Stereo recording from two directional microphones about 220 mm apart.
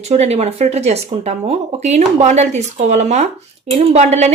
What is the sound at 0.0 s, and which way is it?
Speech, 30° right (ahead or behind).